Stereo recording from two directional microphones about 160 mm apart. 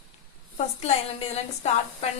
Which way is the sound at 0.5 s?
45° left (ahead or behind).